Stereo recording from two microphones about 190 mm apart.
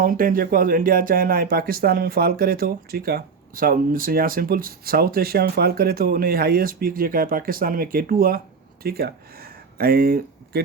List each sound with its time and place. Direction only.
0.0 s speech: 45° right (ahead or behind)